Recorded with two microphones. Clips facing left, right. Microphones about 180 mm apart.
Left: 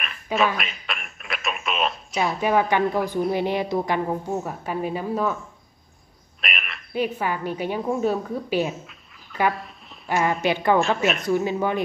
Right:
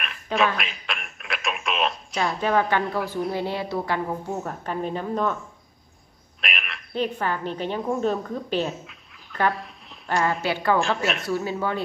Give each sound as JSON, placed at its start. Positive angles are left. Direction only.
{"t": 0.0, "sound": "a sound", "side_deg": 0}
{"t": 0.6, "sound": "telephone", "side_deg": 0}
{"t": 3.3, "sound": "a woman's voice", "side_deg": 15}
{"t": 6.4, "sound": "a woman's voice", "side_deg": 0}
{"t": 8.8, "sound": "dog", "side_deg": 5}
{"t": 10.4, "sound": "a woman's voice", "side_deg": 20}